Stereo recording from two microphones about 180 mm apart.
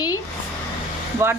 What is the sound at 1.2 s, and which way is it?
Speech, 15° right (ahead or behind).